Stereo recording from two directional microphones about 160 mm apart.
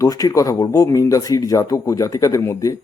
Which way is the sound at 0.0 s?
20° left (ahead or behind).